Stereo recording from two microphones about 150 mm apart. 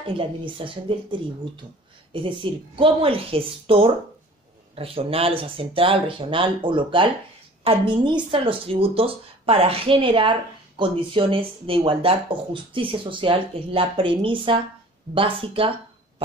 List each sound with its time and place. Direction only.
0.0 s speech: 35° right (ahead or behind)